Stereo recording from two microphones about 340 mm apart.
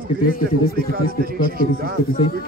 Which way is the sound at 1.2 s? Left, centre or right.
Right.